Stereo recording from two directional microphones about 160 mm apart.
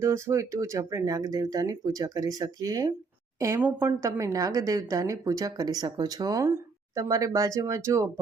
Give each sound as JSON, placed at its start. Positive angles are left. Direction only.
{"t": 0.0, "sound": "a woman's voice", "side_deg": -15}